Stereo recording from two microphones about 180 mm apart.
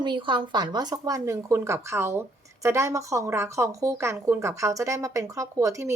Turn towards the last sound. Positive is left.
turn(degrees=-15)  # may be behind; listen again after turning